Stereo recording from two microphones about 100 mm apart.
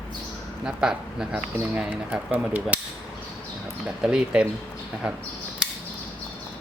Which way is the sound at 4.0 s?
5° right (ahead or behind).